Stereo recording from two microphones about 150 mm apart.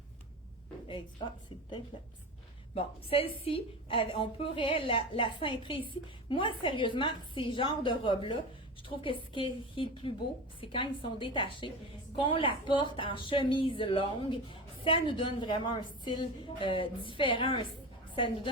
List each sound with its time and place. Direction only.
2.7 s a woman's voice: 40° left (ahead or behind)